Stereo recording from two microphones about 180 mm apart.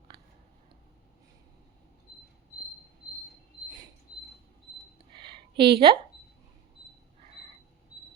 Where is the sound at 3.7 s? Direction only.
20° right (ahead or behind).